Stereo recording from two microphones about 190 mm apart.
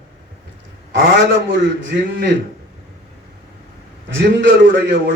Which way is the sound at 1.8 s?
75° right (ahead or behind).